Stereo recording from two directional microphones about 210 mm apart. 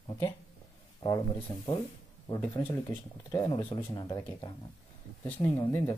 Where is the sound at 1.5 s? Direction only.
20° left (ahead or behind).